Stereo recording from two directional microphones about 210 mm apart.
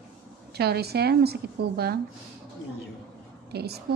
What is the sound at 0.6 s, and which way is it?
A woman's voice, 50° right (ahead or behind).